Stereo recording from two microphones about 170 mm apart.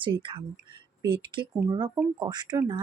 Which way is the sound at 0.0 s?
30° right (ahead or behind).